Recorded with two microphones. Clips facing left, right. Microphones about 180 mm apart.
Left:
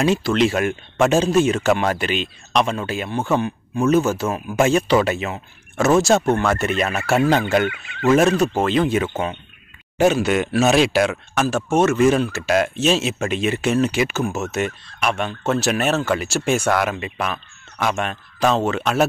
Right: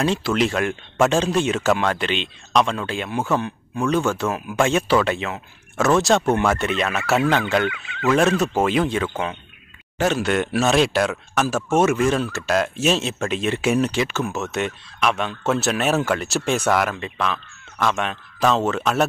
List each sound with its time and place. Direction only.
0.0 s speech: 5° left (ahead or behind)
7.7 s speech: 30° left (ahead or behind)
8.4 s speech: 5° right (ahead or behind)
8.8 s speech: 10° left (ahead or behind)